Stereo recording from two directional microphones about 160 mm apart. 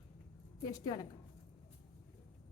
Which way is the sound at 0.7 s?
25° left (ahead or behind).